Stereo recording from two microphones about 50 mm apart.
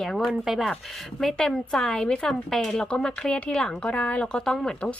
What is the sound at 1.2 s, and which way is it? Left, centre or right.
A woman's voice, centre.